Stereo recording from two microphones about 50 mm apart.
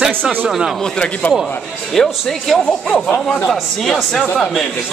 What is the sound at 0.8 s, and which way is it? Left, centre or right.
Speech, centre.